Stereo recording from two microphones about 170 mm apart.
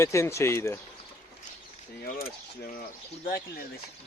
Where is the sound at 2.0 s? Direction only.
60° left (ahead or behind).